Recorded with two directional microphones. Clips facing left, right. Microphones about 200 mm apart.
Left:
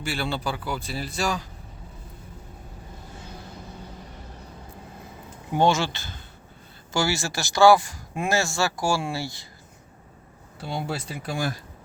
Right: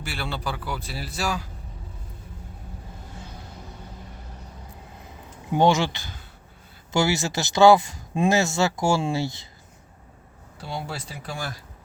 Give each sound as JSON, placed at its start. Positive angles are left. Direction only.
{"t": 0.0, "sound": "speech", "side_deg": 0}
{"t": 5.5, "sound": "speech", "side_deg": -15}
{"t": 10.8, "sound": "speech", "side_deg": 15}